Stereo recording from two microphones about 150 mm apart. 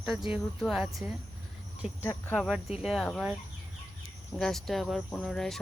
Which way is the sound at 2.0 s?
15° left (ahead or behind).